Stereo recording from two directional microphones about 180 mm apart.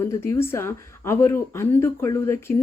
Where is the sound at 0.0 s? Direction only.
15° left (ahead or behind).